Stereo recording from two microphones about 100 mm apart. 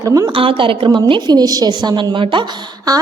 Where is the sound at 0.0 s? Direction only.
35° right (ahead or behind).